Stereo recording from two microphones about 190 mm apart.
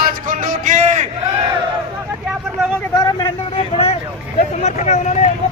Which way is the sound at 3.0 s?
20° left (ahead or behind).